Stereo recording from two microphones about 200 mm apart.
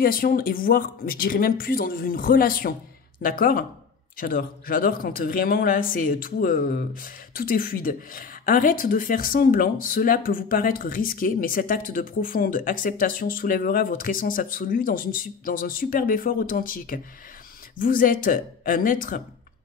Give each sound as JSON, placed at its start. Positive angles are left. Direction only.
{"t": 0.0, "sound": "speech", "side_deg": 45}